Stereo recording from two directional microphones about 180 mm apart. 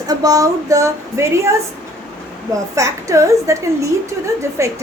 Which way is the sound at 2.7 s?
15° right (ahead or behind).